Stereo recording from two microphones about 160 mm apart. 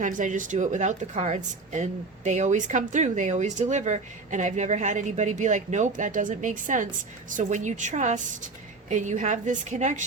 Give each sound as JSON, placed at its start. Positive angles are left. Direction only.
{"t": 0.0, "sound": "speech", "side_deg": -55}